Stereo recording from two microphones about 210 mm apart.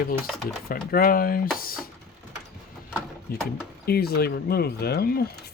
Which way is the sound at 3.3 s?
45° left (ahead or behind).